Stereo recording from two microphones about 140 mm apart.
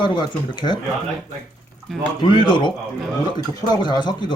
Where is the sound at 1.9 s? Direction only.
Centre (ahead or behind).